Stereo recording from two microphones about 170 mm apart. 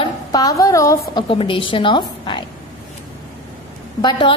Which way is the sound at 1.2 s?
30° left (ahead or behind).